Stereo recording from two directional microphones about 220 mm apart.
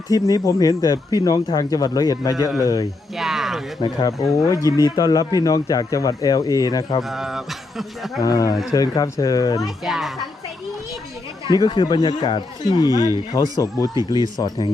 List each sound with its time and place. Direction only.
0.1 s speech: 15° left (ahead or behind)
3.2 s music: centre (ahead or behind)
3.8 s speech: 20° left (ahead or behind)
7.1 s speech: centre (ahead or behind)
8.2 s speech: 15° left (ahead or behind)
9.6 s speech: centre (ahead or behind)
11.4 s speech: 20° left (ahead or behind)
12.9 s speech: 15° right (ahead or behind)
13.1 s speech: 15° left (ahead or behind)